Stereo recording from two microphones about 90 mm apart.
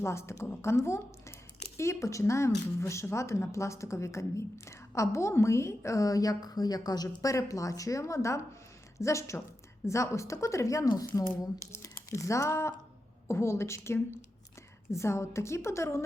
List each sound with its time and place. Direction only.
0.0 s a woman's voice: 30° left (ahead or behind)